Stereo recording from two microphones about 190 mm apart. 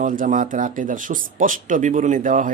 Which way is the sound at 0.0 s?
45° right (ahead or behind).